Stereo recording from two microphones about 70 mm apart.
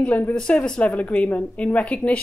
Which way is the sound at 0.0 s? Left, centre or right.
Centre.